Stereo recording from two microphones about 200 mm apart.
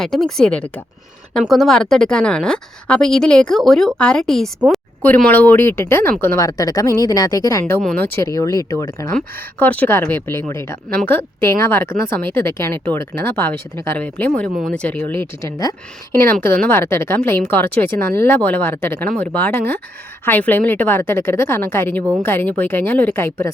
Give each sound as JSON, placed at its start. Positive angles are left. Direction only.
{"t": 0.0, "sound": "speech", "side_deg": 0}
{"t": 7.6, "sound": "speech", "side_deg": 5}